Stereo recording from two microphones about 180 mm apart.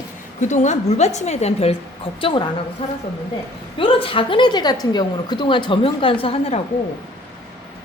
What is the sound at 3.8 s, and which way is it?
A woman's voice, 30° left (ahead or behind).